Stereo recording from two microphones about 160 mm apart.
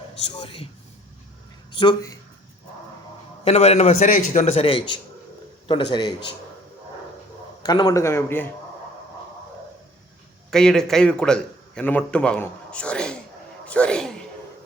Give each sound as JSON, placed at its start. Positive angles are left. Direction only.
{"t": 0.3, "sound": "speech", "side_deg": 35}
{"t": 1.7, "sound": "a man's voice", "side_deg": 30}
{"t": 3.4, "sound": "a man's voice", "side_deg": 40}
{"t": 7.6, "sound": "a man's voice", "side_deg": 25}
{"t": 10.5, "sound": "a man's voice", "side_deg": 5}